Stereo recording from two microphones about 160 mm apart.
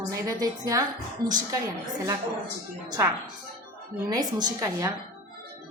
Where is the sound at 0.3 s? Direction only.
25° right (ahead or behind).